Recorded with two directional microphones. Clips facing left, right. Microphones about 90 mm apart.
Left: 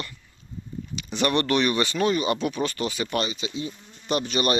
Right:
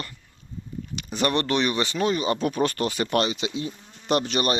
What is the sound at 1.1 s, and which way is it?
Speech, 35° right (ahead or behind).